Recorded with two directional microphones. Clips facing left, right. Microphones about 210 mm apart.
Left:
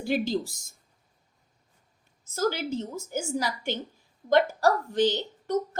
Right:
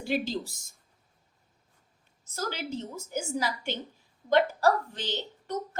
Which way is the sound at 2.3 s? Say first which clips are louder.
Left 6 dB; 45° left (ahead or behind).